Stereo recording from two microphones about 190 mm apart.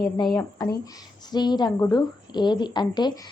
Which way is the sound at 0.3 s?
20° left (ahead or behind).